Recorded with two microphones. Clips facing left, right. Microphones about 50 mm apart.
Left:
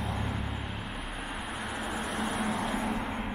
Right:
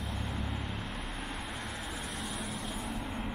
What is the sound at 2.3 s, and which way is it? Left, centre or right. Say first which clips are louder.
Vehicle: left 8 dB; left.